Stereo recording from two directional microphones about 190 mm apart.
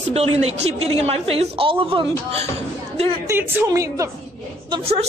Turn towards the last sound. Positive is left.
turn(degrees=-30)  # may be behind; listen again after turning